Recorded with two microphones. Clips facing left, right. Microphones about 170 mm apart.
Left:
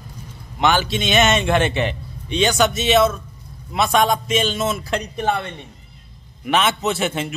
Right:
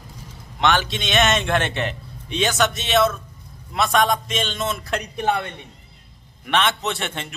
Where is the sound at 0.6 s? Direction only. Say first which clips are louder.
Left 2 dB; 5° left (ahead or behind).